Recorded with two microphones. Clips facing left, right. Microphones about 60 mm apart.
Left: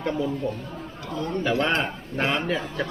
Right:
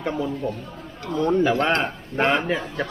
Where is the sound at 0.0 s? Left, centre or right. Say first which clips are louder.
Even; centre.